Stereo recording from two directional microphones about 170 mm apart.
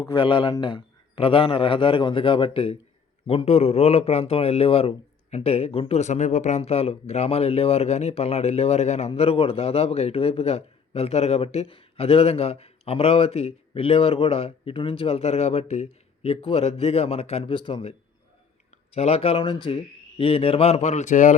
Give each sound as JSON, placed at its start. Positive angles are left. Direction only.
{"t": 0.0, "sound": "a man's voice", "side_deg": 25}
{"t": 18.9, "sound": "a man's voice", "side_deg": 35}